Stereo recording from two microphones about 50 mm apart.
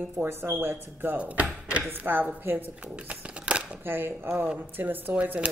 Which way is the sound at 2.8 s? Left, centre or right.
Right.